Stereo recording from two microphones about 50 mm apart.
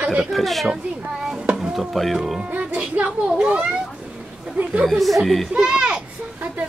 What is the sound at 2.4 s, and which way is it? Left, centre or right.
Children playing, right.